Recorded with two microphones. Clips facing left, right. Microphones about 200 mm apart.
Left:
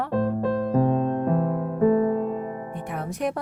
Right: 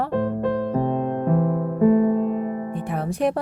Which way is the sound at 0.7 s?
25° right (ahead or behind).